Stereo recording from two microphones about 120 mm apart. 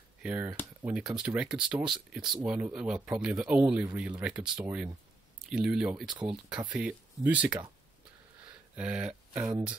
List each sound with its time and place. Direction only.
0.2 s speech: 10° right (ahead or behind)
8.7 s speech: 10° right (ahead or behind)